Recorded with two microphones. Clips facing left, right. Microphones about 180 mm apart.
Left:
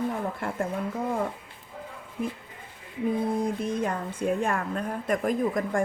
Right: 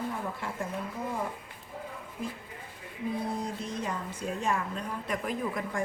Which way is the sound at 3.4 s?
55° left (ahead or behind).